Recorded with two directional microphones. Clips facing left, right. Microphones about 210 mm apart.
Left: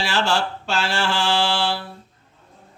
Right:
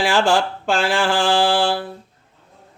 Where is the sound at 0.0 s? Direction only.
50° right (ahead or behind).